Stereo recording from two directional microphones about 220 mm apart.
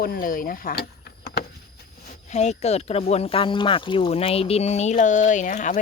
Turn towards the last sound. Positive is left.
turn(degrees=35)  # may be behind; listen again after turning